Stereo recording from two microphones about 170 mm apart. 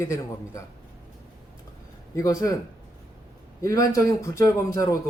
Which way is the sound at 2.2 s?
20° left (ahead or behind).